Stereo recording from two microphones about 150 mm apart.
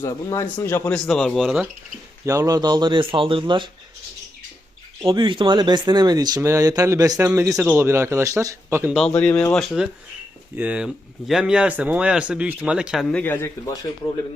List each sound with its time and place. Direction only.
0.0 s speech: 20° left (ahead or behind)
0.9 s speech: 5° left (ahead or behind)
2.2 s speech: 20° right (ahead or behind)
5.0 s speech: 30° right (ahead or behind); by 9.0 s 15° right (ahead or behind)
9.0 s speech: 5° left (ahead or behind)